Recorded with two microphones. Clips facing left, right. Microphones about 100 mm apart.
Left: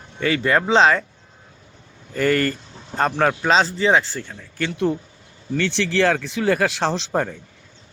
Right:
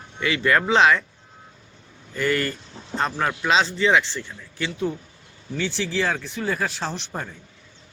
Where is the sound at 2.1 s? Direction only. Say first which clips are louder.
Left 4 dB; 45° left (ahead or behind).